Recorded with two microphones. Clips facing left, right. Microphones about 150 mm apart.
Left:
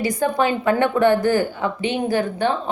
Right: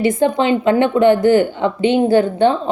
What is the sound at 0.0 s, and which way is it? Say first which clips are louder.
Speech: right 5 dB; 25° right (ahead or behind).